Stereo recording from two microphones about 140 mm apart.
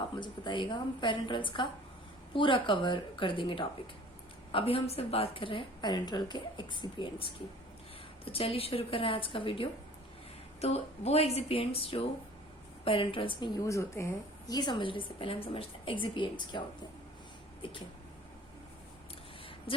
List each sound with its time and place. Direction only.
0.2 s a woman's voice: 35° left (ahead or behind)
10.6 s a woman's voice: 50° left (ahead or behind)
13.6 s a woman's voice: 20° left (ahead or behind); by 17.8 s 35° left (ahead or behind)
19.7 s speech: 40° left (ahead or behind)